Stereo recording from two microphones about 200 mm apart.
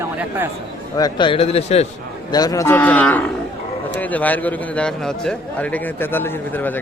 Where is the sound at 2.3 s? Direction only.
20° left (ahead or behind).